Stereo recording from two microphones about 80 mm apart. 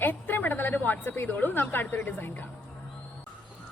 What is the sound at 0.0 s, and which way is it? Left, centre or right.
A woman's voice, left.